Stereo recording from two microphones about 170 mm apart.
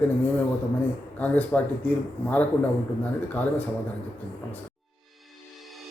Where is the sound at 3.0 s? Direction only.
10° left (ahead or behind).